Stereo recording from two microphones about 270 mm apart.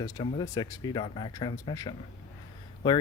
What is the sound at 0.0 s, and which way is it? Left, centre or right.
Speech, centre.